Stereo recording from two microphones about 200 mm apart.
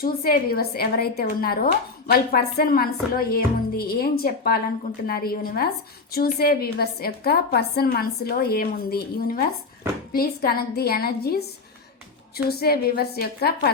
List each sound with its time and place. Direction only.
0.0 s speech: 50° left (ahead or behind)
12.5 s speech: 50° left (ahead or behind)